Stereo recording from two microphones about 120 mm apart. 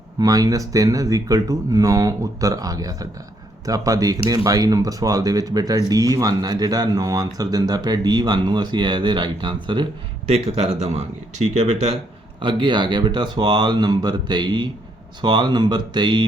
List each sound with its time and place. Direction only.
0.2 s speech: 30° right (ahead or behind)
10.2 s speech: 55° right (ahead or behind)
12.4 s speech: 40° right (ahead or behind)